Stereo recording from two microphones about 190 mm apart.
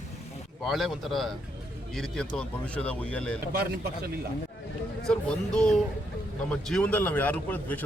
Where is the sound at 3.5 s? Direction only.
55° right (ahead or behind).